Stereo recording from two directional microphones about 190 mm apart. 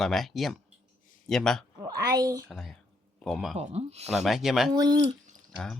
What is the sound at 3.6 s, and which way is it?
Speech, 35° right (ahead or behind).